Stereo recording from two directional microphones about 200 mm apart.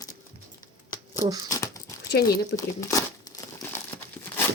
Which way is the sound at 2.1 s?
50° left (ahead or behind).